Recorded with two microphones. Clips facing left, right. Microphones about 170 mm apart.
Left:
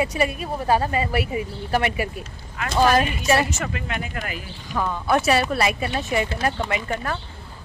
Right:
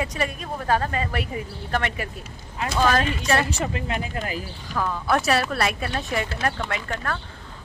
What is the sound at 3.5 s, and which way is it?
Speech, 30° right (ahead or behind).